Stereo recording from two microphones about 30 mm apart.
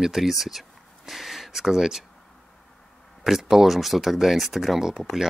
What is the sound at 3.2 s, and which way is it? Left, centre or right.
Speech, centre.